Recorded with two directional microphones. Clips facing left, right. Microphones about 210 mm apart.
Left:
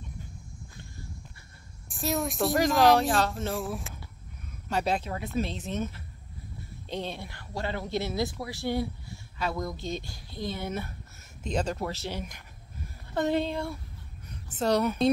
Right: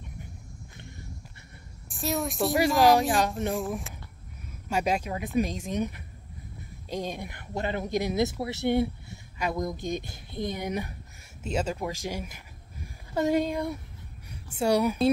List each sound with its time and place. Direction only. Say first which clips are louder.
1.9 s speech: even; centre (ahead or behind)
3.2 s speech: right 2 dB; 15° right (ahead or behind)
3.5 s speech: right 2 dB; centre (ahead or behind)
4.6 s speech: right 1 dB; 10° right (ahead or behind)